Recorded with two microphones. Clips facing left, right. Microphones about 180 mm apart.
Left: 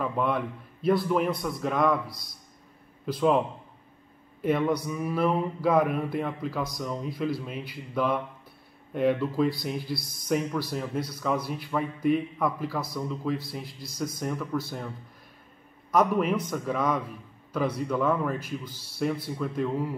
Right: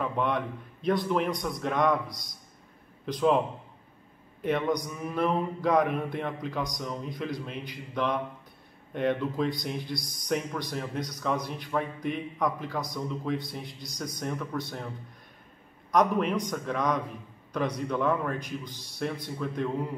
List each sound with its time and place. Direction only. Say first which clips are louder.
0.0 s a man's voice: left 1 dB; 5° left (ahead or behind)
4.4 s speech: left 2 dB; 5° left (ahead or behind)
15.9 s speech: left 1 dB; 5° left (ahead or behind)